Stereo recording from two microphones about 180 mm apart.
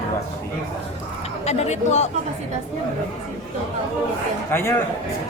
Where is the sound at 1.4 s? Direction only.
40° left (ahead or behind).